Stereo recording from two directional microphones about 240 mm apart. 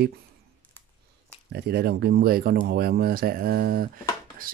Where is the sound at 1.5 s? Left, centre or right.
Right.